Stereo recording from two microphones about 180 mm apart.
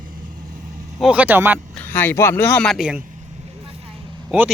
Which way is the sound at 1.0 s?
10° right (ahead or behind).